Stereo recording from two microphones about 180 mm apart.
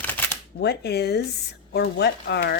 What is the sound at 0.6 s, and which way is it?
Speech, 65° left (ahead or behind).